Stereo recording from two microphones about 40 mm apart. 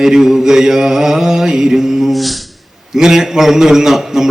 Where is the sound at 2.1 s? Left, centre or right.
Centre.